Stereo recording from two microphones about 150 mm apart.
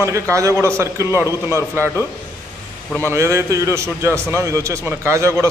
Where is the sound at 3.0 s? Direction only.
20° right (ahead or behind).